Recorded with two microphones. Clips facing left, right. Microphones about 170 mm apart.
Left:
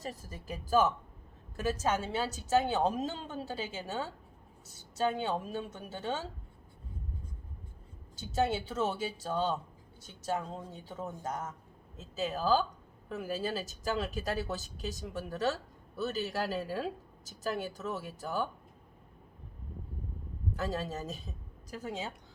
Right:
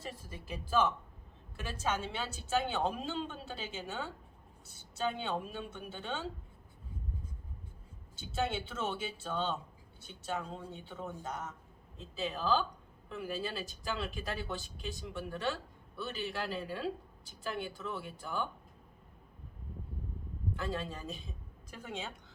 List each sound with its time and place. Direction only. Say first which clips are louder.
0.0 s speech: left 3 dB; 40° left (ahead or behind)
8.1 s speech: left 4 dB; 40° left (ahead or behind)
20.5 s speech: left 3 dB; 40° left (ahead or behind)